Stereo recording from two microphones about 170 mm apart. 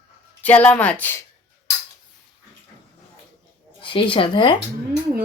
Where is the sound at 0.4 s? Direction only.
10° left (ahead or behind).